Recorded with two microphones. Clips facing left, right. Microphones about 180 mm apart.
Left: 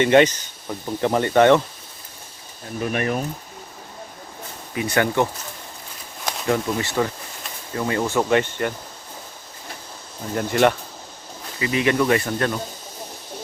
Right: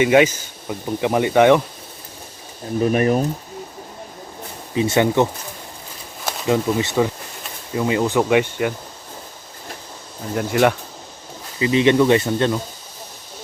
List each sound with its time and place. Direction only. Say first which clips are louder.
0.0 s speech: right 1 dB; 5° right (ahead or behind)
2.8 s speech: right 6 dB; 35° right (ahead or behind)
4.7 s speech: right 4 dB; 25° right (ahead or behind)
6.2 s a sound: right 2 dB; 5° right (ahead or behind)
6.7 s speech: right 4 dB; 10° right (ahead or behind)
10.3 s speech: right 1 dB; 5° right (ahead or behind)
11.6 s speech: right 5 dB; 25° right (ahead or behind)